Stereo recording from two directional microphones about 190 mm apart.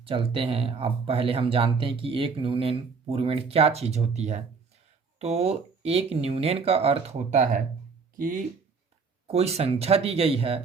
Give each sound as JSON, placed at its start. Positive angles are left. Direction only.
{"t": 0.0, "sound": "speech", "side_deg": -30}
{"t": 9.2, "sound": "speech", "side_deg": -35}